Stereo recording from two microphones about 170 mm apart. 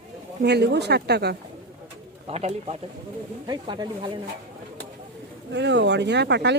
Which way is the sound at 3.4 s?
25° right (ahead or behind).